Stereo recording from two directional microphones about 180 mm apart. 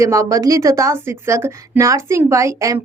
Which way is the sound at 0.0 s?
15° right (ahead or behind).